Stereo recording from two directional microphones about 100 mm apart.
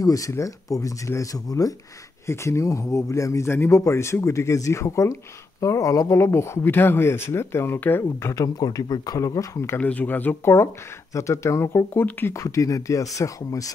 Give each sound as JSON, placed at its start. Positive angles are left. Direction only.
{"t": 0.0, "sound": "speech", "side_deg": 35}
{"t": 9.8, "sound": "speech", "side_deg": 15}